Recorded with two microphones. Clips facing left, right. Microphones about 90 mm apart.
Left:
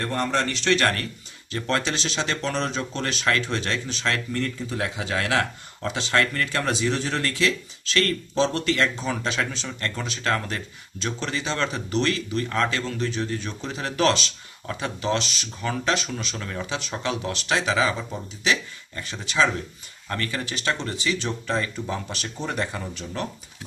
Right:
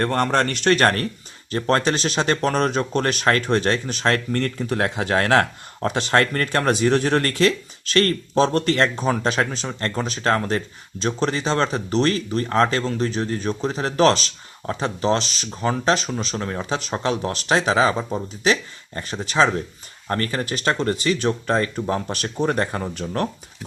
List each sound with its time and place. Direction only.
0.0 s speech: 60° right (ahead or behind)